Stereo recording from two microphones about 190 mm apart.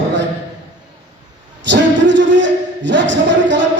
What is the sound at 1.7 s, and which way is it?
A woman's voice, 70° right (ahead or behind).